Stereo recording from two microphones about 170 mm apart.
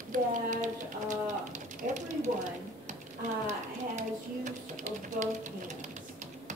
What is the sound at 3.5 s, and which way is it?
Speech, 45° right (ahead or behind).